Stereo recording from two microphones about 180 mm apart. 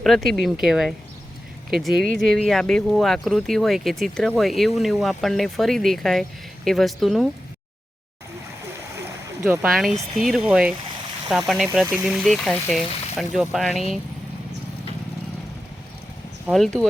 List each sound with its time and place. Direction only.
0.0 s speech: centre (ahead or behind)
9.4 s speech: 15° right (ahead or behind)
9.7 s speech: centre (ahead or behind)
16.5 s speech: 5° left (ahead or behind)